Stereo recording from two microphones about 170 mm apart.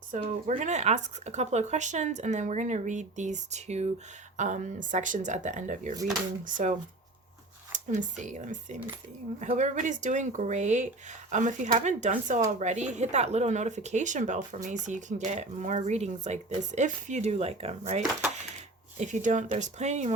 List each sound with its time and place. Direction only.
0.1 s speech: 45° right (ahead or behind)
7.9 s speech: 45° right (ahead or behind)